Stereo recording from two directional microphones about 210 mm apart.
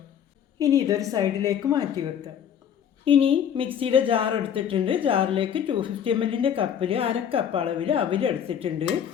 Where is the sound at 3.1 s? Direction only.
25° right (ahead or behind).